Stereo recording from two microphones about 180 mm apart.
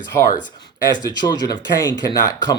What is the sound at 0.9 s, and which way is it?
Speech, 20° left (ahead or behind).